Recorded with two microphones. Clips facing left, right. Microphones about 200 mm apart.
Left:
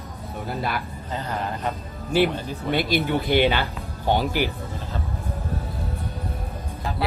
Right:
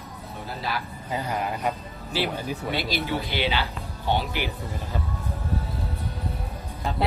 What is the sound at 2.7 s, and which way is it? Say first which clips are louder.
Speech: left 7 dB; 50° left (ahead or behind).